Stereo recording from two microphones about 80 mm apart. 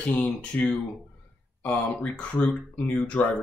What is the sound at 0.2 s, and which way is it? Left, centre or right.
Speech, centre.